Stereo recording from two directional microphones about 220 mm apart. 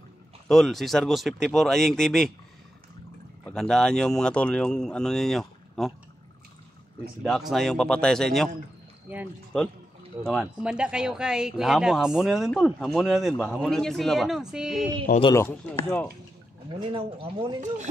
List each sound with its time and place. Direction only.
0.5 s speech: centre (ahead or behind)
3.4 s speech: 5° left (ahead or behind)
7.2 s speech: centre (ahead or behind)
10.2 s speech: centre (ahead or behind)
15.1 s speech: 15° left (ahead or behind)
16.6 s speech: 25° right (ahead or behind)